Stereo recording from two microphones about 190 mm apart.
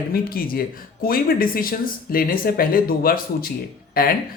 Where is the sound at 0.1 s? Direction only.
50° left (ahead or behind).